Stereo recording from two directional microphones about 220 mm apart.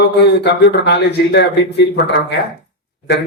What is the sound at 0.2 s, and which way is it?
Speech, 50° left (ahead or behind).